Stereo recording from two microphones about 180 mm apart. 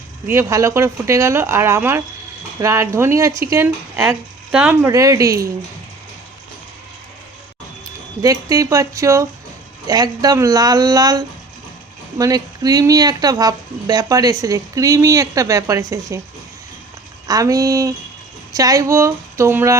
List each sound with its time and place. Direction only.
0.3 s speech: 15° right (ahead or behind)
8.2 s speech: 20° right (ahead or behind)
17.2 s speech: 20° right (ahead or behind)